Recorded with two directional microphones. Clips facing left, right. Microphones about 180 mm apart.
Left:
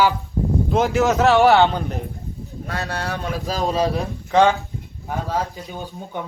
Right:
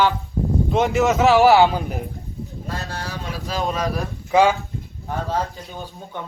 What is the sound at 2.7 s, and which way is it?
Speech, 65° left (ahead or behind).